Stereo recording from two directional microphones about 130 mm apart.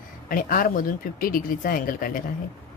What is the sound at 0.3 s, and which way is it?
Speech, 90° left.